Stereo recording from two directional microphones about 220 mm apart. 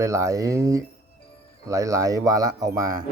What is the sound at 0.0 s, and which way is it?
Speech, 15° right (ahead or behind).